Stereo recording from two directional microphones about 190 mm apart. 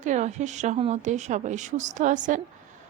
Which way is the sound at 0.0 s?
40° right (ahead or behind).